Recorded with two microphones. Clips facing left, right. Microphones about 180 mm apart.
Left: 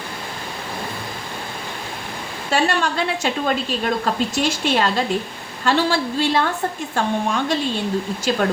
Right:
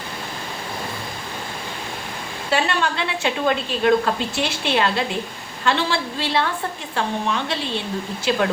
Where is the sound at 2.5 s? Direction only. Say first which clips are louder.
Left 2 dB; 45° left (ahead or behind).